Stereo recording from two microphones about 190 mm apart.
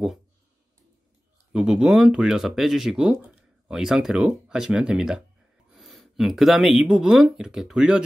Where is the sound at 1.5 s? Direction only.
5° right (ahead or behind).